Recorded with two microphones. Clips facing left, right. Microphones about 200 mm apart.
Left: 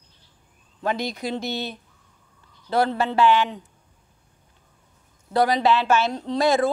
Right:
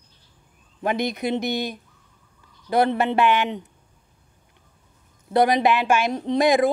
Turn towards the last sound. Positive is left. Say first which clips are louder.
# right 2 dB
turn(degrees=-15)  # may be behind; listen again after turning